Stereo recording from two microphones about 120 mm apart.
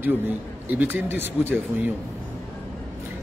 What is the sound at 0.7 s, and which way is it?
Speech, 15° right (ahead or behind).